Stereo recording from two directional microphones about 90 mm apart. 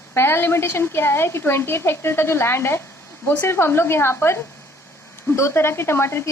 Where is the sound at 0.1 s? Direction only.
25° left (ahead or behind).